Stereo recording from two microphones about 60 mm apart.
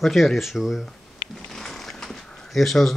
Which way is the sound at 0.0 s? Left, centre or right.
Centre.